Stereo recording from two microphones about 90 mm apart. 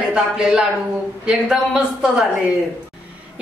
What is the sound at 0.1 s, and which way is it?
A woman's voice, 5° right (ahead or behind).